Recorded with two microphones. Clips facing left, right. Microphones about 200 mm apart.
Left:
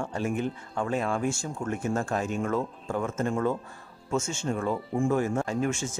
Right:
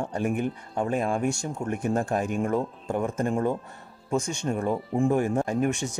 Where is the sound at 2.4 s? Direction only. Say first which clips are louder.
Right 2 dB; 20° right (ahead or behind).